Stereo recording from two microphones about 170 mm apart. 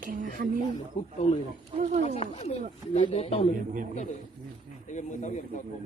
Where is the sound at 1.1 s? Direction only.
40° left (ahead or behind).